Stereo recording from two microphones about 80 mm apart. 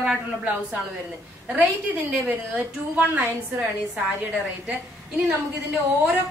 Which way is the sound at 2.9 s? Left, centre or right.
Centre.